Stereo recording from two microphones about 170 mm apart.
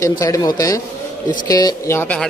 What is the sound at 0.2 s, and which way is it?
Speech, 20° left (ahead or behind).